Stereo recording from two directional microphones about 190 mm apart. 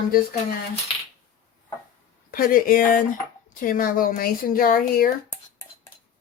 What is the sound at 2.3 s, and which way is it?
Speech, 50° left (ahead or behind).